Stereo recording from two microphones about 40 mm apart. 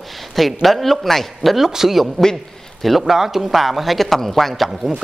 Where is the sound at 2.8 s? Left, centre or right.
Centre.